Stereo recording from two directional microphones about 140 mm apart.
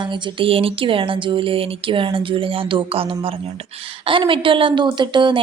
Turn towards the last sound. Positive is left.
turn(degrees=-35)  # may be behind; listen again after turning